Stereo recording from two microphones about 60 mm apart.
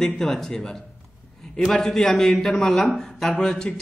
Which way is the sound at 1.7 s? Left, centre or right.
Centre.